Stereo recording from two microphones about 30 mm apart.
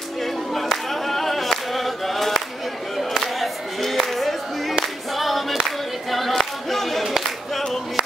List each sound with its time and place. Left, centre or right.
1.0 s choir: centre
3.0 s music: centre
5.1 s singing: centre
6.1 s choir: centre
7.0 s singing: centre